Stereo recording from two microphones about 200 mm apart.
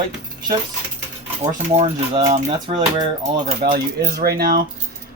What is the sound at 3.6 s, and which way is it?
Speech, 50° right (ahead or behind).